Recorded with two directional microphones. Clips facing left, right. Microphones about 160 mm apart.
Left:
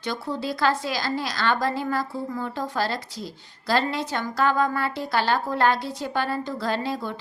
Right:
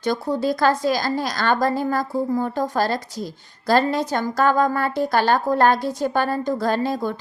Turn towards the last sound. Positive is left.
turn(degrees=-45)  # may be behind; listen again after turning